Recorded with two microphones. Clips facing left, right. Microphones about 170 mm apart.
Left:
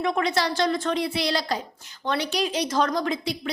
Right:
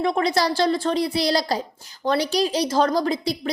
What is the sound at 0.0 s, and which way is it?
A woman's voice, 35° right (ahead or behind).